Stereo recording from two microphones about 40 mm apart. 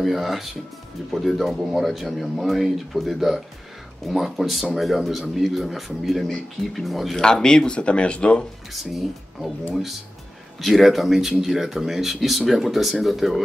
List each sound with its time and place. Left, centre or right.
0.0 s speech: centre
7.2 s speech: centre
8.7 s speech: centre
10.6 s speech: centre